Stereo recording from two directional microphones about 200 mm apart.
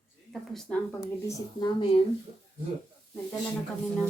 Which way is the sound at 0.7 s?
5° left (ahead or behind).